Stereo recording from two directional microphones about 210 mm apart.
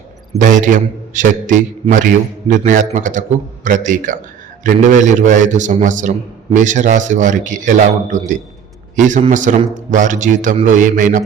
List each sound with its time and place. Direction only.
0.4 s a man's voice: 40° right (ahead or behind)